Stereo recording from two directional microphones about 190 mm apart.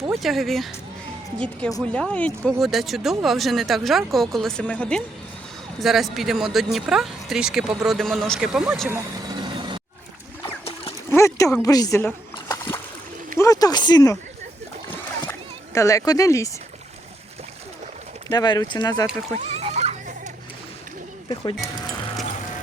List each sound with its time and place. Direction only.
0.1 s speech: centre (ahead or behind)
1.8 s speech: 5° left (ahead or behind)
8.9 s vehicle: 20° right (ahead or behind)
10.4 s a sound: 30° left (ahead or behind)
11.1 s speech: 15° left (ahead or behind)
15.3 s a child's voice: 15° left (ahead or behind)
18.3 s speech: 20° left (ahead or behind)
19.3 s splash: 35° right (ahead or behind)